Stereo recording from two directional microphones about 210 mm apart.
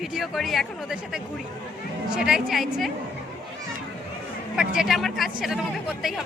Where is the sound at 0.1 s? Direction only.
Centre (ahead or behind).